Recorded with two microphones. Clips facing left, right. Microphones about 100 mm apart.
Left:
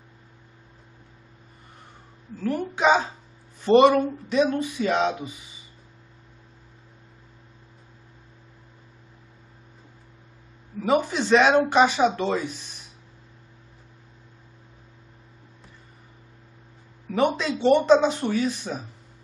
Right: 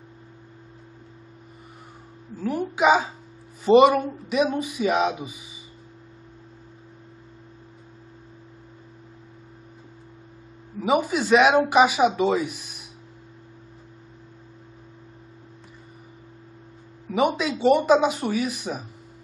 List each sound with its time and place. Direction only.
2.3 s speech: 10° right (ahead or behind)
10.8 s speech: 10° right (ahead or behind)
17.4 s speech: 10° right (ahead or behind)